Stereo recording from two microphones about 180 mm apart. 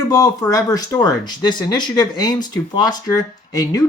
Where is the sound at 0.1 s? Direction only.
20° left (ahead or behind).